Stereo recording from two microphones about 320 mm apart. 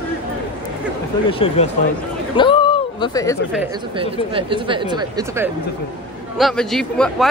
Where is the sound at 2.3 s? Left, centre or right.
Centre.